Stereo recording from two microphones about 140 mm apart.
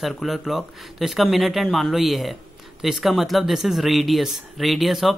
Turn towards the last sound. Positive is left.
turn(degrees=0)  # may be behind; listen again after turning